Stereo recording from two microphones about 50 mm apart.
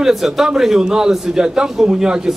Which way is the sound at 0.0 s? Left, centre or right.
Centre.